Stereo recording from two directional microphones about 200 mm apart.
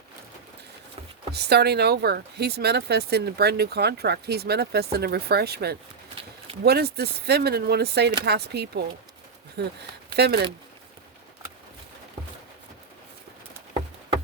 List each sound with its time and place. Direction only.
1.3 s speech: 55° right (ahead or behind)